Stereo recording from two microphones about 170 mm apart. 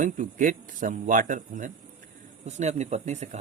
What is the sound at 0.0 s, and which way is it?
A man's voice, 50° right (ahead or behind).